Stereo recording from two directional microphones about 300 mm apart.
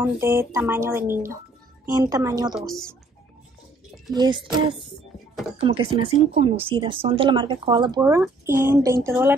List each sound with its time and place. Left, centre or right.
0.0 s speech: centre
2.5 s speech: centre
4.1 s speech: centre